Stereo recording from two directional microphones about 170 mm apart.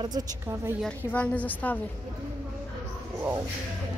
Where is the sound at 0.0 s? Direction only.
20° right (ahead or behind).